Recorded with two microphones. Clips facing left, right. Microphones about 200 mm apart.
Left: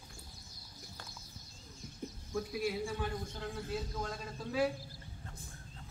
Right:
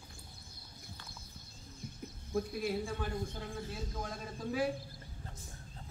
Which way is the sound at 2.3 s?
55° right (ahead or behind).